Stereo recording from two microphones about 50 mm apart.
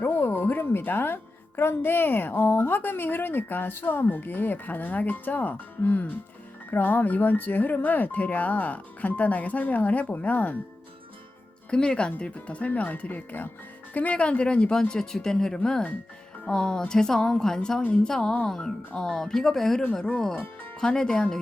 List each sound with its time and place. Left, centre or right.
0.0 s a woman's voice: left
11.7 s speech: centre